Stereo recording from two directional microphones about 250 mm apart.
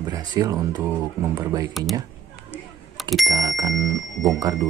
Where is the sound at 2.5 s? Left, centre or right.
Centre.